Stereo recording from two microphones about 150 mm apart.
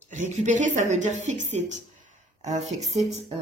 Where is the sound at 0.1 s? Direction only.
50° right (ahead or behind).